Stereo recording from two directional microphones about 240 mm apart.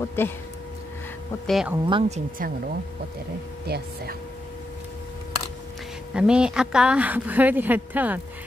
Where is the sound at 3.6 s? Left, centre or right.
Right.